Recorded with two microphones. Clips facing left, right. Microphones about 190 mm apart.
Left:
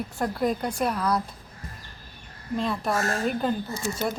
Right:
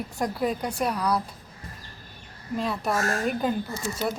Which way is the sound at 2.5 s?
5° right (ahead or behind).